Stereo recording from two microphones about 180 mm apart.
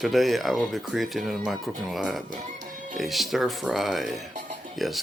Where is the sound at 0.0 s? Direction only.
Centre (ahead or behind).